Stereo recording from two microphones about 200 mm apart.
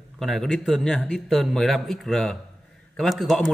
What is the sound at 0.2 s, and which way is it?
A man's voice, centre (ahead or behind).